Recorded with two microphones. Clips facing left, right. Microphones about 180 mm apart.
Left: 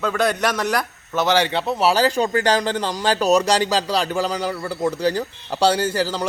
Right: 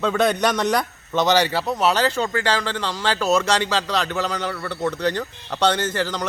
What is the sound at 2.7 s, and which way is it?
Speech, 45° left (ahead or behind).